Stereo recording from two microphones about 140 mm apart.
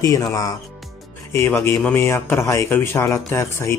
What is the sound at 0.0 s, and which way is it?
Speech, 25° left (ahead or behind).